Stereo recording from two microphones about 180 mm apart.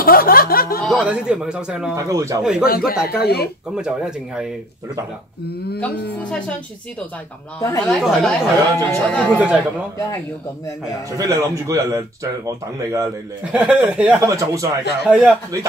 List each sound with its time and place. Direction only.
0.0 s a sound: 55° left (ahead or behind)
0.8 s a man's voice: 5° right (ahead or behind)
2.0 s speech: 15° right (ahead or behind)
2.6 s a sound: 55° left (ahead or behind)
3.7 s a man's voice: 5° right (ahead or behind)
6.2 s speech: 5° left (ahead or behind)
7.8 s a man's voice: centre (ahead or behind)
8.7 s speech: 10° left (ahead or behind)
9.4 s speech: 5° right (ahead or behind)
11.1 s speech: 20° right (ahead or behind)
13.4 s speech: 5° right (ahead or behind)
15.0 s a man's voice: 5° right (ahead or behind)